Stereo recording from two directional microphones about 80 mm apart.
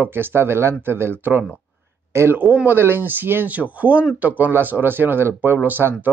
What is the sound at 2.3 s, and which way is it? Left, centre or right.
Speech, right.